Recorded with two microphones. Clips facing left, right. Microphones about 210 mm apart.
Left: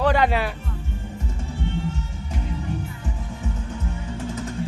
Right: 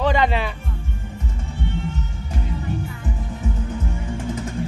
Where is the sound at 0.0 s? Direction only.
10° left (ahead or behind).